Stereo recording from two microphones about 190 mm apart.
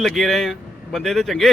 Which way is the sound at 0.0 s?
Centre (ahead or behind).